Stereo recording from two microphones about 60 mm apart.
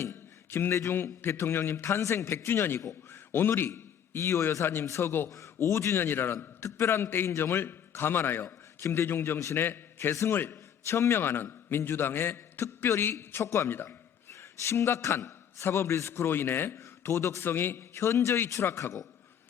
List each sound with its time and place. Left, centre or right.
0.0 s a sound: left
0.9 s a man's voice: left
1.7 s a man's voice: left
4.2 s a man's voice: left
4.6 s a man's voice: left
8.8 s a man's voice: left
9.0 s a man's voice: left
16.7 s a man's voice: left